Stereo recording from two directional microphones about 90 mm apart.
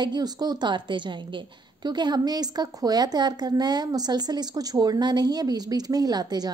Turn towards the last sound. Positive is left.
turn(degrees=-50)  # may be behind; listen again after turning